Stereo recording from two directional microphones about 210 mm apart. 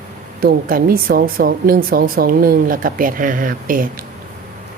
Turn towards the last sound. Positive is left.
turn(degrees=-40)  # may be behind; listen again after turning